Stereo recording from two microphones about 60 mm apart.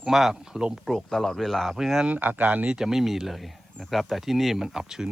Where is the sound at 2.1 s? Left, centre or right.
Right.